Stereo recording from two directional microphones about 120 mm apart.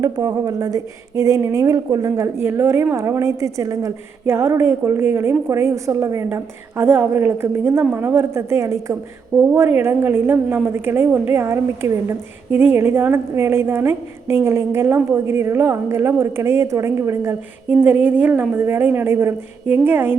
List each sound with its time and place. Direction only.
0.0 s a woman's voice: 25° right (ahead or behind)